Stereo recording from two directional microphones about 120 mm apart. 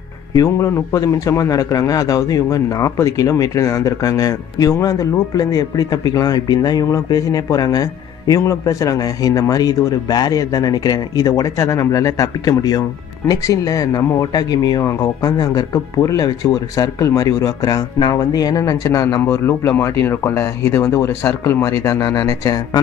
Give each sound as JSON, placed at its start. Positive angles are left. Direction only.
{"t": 0.3, "sound": "a man's voice", "side_deg": 30}